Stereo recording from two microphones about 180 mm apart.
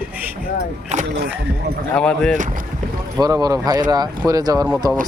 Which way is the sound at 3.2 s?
20° right (ahead or behind).